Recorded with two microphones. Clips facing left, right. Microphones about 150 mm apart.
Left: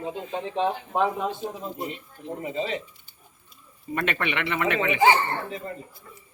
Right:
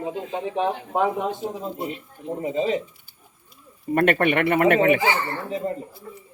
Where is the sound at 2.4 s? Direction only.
30° right (ahead or behind).